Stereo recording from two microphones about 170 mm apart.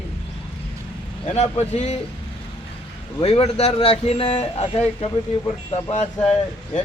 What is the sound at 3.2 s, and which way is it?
Speech, 35° left (ahead or behind).